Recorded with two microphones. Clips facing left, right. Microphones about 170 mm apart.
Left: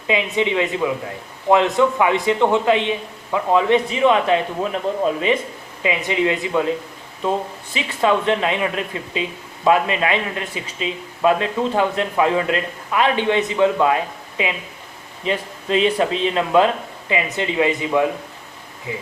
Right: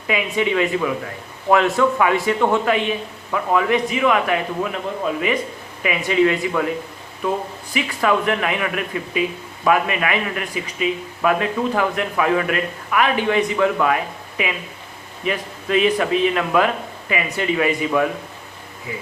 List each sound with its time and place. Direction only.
0.3 s speech: 20° left (ahead or behind)